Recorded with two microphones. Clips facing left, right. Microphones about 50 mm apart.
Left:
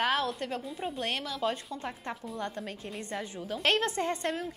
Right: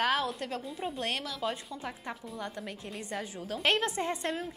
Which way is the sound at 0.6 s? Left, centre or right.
Centre.